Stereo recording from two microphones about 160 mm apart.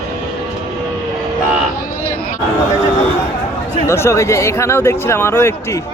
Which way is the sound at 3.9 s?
15° left (ahead or behind).